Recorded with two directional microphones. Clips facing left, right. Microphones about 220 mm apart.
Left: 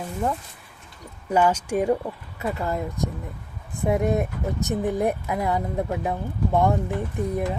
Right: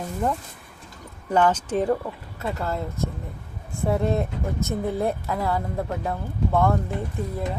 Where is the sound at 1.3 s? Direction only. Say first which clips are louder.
Even; 10° left (ahead or behind).